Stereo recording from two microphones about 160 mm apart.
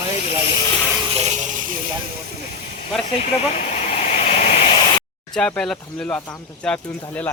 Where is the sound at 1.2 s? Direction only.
50° right (ahead or behind).